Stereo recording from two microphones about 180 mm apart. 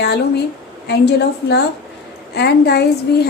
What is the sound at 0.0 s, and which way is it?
A woman's voice, 65° left (ahead or behind).